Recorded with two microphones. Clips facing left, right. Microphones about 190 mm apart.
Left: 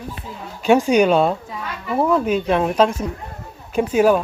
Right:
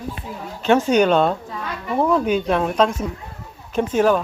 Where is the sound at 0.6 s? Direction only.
10° left (ahead or behind).